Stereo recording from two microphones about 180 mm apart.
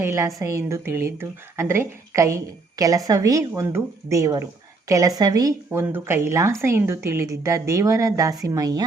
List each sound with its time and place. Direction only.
0.0 s a woman's voice: 15° right (ahead or behind)